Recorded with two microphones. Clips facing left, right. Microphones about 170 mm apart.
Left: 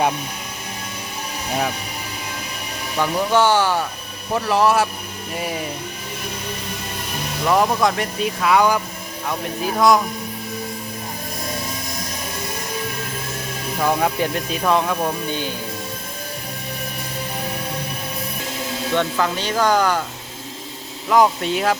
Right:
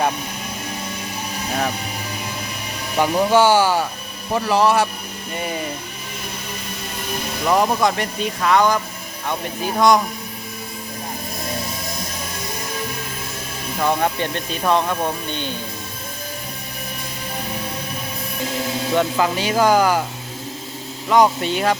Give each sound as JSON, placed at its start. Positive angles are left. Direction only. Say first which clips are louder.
{"t": 3.0, "sound": "speech", "louder": "right 3 dB", "side_deg": -20}
{"t": 3.3, "sound": "speech", "louder": "right 2 dB", "side_deg": -10}
{"t": 7.4, "sound": "speech", "louder": "even", "side_deg": -5}
{"t": 13.7, "sound": "speech", "louder": "even", "side_deg": 5}
{"t": 18.9, "sound": "speech", "louder": "right 2 dB", "side_deg": -10}
{"t": 21.1, "sound": "speech", "louder": "right 1 dB", "side_deg": 0}